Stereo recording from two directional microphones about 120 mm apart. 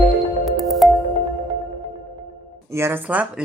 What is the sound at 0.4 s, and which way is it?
Music, centre (ahead or behind).